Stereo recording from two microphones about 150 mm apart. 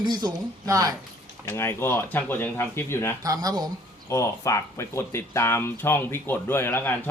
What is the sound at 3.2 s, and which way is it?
Speech, 25° right (ahead or behind).